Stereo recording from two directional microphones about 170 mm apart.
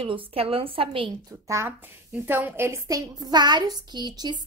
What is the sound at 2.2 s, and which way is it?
A woman's voice, 10° right (ahead or behind).